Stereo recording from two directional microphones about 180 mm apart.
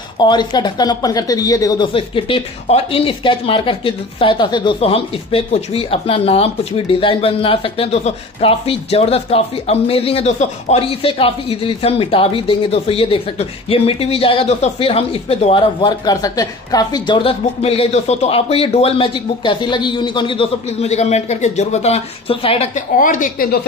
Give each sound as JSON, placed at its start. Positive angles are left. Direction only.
{"t": 0.2, "sound": "speech", "side_deg": 25}
{"t": 2.0, "sound": "speech", "side_deg": 30}
{"t": 22.8, "sound": "a woman's voice", "side_deg": 45}